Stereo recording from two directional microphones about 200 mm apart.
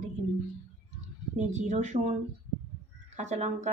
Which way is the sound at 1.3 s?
35° right (ahead or behind).